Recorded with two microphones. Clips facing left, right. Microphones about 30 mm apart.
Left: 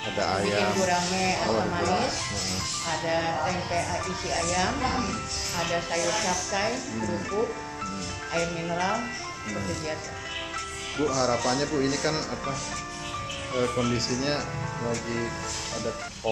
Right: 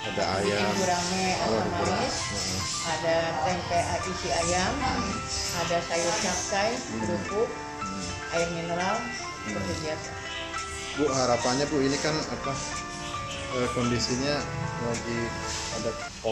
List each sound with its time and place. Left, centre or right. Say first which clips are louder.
0.1 s speech: left 1 dB; centre
0.8 s speech: left 1 dB; left
1.1 s speech: left 1 dB; centre
11.0 s speech: right 1 dB; centre